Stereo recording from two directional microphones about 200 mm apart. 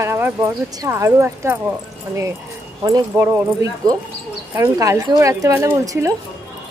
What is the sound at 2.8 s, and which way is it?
Speech, 15° right (ahead or behind).